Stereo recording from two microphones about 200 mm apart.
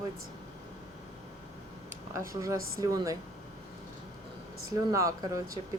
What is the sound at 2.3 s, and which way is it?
Speech, 15° right (ahead or behind).